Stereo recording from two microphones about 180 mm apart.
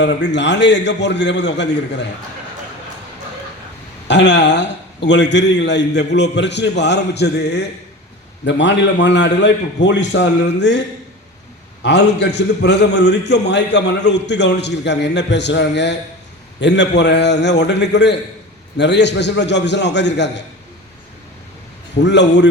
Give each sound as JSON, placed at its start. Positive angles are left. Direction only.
{"t": 0.0, "sound": "a man's voice", "side_deg": 75}
{"t": 4.1, "sound": "a man's voice", "side_deg": 75}
{"t": 11.8, "sound": "a man's voice", "side_deg": 70}
{"t": 22.0, "sound": "a man's voice", "side_deg": 75}